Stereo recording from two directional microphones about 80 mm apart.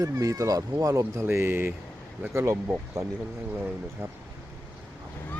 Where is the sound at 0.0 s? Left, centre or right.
Right.